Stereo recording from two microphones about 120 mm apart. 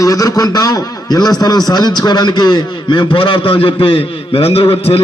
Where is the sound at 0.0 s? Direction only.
30° left (ahead or behind).